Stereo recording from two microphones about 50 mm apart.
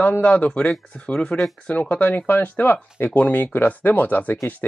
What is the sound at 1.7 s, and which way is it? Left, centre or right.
Speech, left.